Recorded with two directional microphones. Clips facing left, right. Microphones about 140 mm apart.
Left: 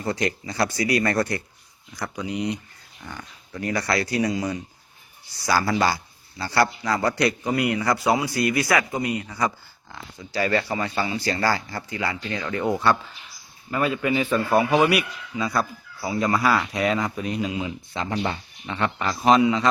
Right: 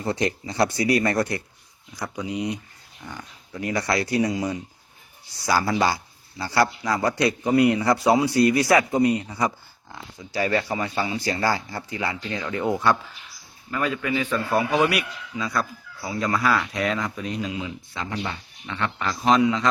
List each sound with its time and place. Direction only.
0.1 s a man's voice: 25° right (ahead or behind)
3.0 s speech: centre (ahead or behind)
3.5 s a man's voice: 20° right (ahead or behind)
13.7 s a man's voice: 15° left (ahead or behind)
17.6 s speech: 25° left (ahead or behind)
18.7 s a man's voice: 15° left (ahead or behind)